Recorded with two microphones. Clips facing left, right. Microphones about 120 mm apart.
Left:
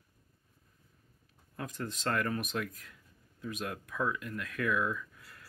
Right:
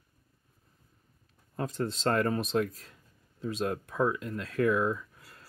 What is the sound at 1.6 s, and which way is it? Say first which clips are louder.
Speech: right 7 dB; 30° right (ahead or behind).